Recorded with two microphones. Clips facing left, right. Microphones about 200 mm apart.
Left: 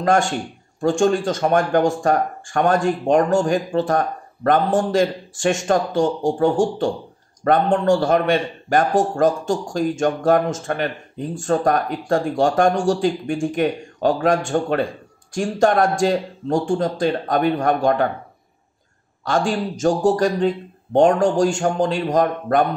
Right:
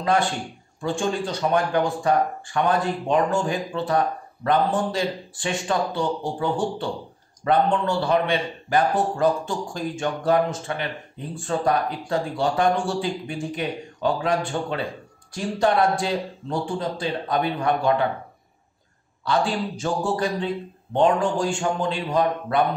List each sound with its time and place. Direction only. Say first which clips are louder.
0.0 s speech: left 4 dB; 45° left (ahead or behind)
19.2 s speech: left 3 dB; 45° left (ahead or behind)